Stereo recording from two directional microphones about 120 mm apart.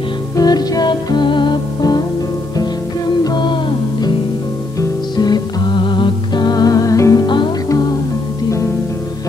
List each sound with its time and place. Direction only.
0.4 s music: 35° left (ahead or behind)
3.3 s music: 40° left (ahead or behind)
7.2 s music: 40° left (ahead or behind)